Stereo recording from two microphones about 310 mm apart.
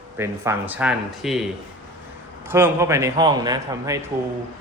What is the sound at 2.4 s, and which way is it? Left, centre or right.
A man's voice, centre.